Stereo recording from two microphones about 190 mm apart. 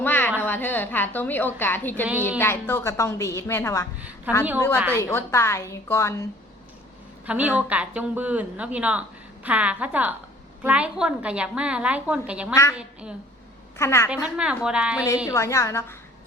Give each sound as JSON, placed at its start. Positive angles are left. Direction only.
{"t": 0.0, "sound": "a sound", "side_deg": 10}
{"t": 0.4, "sound": "a woman's voice", "side_deg": 10}
{"t": 4.3, "sound": "speech", "side_deg": -10}
{"t": 4.9, "sound": "a woman's voice", "side_deg": 15}
{"t": 7.3, "sound": "a woman's voice", "side_deg": -5}
{"t": 13.7, "sound": "a woman's voice", "side_deg": 15}
{"t": 14.3, "sound": "a woman's voice", "side_deg": -5}
{"t": 15.3, "sound": "a woman's voice", "side_deg": 15}